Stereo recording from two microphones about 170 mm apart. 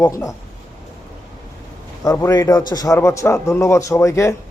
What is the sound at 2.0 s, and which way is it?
A man's voice, 20° left (ahead or behind).